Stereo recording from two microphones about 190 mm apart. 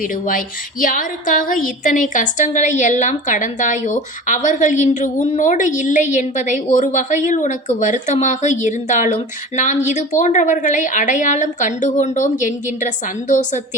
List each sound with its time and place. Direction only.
0.0 s a woman's voice: 45° left (ahead or behind)